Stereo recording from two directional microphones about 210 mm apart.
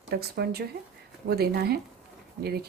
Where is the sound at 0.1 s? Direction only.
50° right (ahead or behind).